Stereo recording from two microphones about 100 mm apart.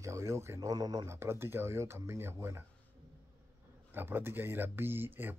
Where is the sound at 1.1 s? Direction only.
25° right (ahead or behind).